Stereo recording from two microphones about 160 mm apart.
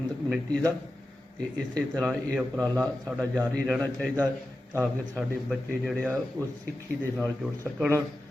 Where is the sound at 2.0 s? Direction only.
5° right (ahead or behind).